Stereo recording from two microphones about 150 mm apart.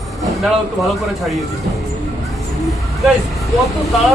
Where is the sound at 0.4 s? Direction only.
Centre (ahead or behind).